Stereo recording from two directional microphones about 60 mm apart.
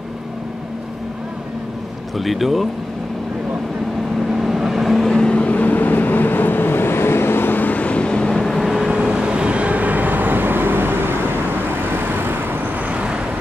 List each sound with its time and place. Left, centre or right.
2.1 s speech: centre
4.3 s vehicle: centre
8.8 s vehicle: centre; by 12.9 s right
12.9 s vehicle: centre